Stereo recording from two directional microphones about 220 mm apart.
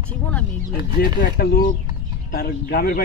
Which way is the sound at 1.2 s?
45° left (ahead or behind).